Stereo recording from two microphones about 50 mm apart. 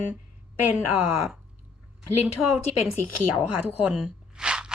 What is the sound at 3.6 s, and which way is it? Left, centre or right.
Speech, right.